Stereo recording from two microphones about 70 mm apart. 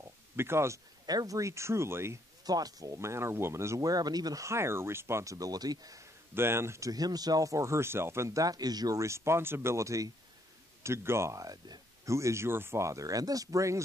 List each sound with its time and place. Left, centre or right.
0.4 s speech: right
1.0 s speech: right
2.4 s speech: right
2.9 s speech: right
3.8 s speech: right
4.5 s speech: right
6.3 s speech: right
6.9 s speech: right
8.9 s speech: right
12.1 s speech: right